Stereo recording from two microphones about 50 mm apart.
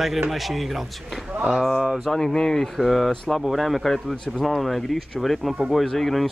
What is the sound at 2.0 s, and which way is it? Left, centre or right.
Speech, centre.